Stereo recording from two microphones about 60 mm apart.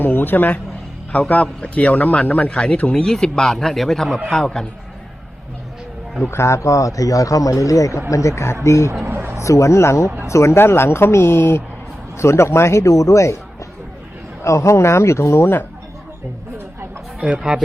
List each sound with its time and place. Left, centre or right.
0.0 s a man's voice: left; by 4.6 s centre
6.3 s speech: left
9.0 s a sound: right
9.4 s speech: left
14.4 s speech: left
17.2 s speech: right